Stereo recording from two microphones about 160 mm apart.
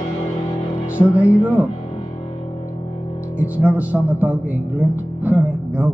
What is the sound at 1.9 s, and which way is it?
Music, 40° left (ahead or behind).